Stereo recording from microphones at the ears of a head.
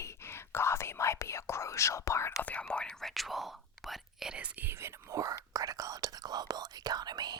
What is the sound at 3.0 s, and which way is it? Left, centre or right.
Whispering, centre.